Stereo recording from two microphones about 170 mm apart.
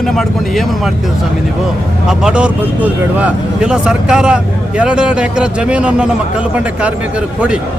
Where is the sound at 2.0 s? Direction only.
5° right (ahead or behind).